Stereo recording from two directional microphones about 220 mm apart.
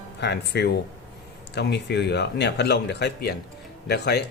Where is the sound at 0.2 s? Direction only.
50° left (ahead or behind).